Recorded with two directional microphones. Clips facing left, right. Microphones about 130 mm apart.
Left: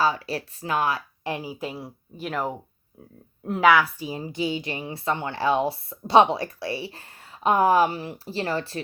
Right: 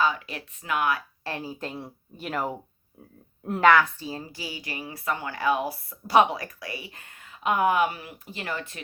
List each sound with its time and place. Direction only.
0.0 s speech: 35° left (ahead or behind)
1.2 s a woman's voice: 15° left (ahead or behind); by 8.8 s 35° left (ahead or behind)